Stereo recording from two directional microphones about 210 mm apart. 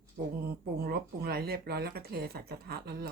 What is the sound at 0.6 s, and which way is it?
Speech, 50° right (ahead or behind).